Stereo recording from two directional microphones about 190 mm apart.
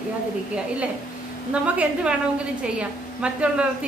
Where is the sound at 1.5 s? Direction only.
5° right (ahead or behind).